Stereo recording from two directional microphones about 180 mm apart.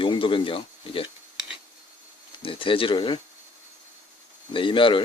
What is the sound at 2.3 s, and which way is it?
Speech, 30° left (ahead or behind).